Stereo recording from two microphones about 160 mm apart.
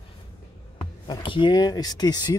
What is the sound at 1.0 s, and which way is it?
Speech, 30° left (ahead or behind).